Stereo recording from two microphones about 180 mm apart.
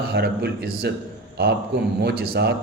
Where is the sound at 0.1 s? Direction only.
65° right (ahead or behind).